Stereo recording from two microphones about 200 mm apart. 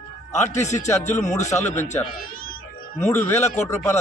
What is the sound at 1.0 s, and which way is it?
A man's voice, 35° left (ahead or behind).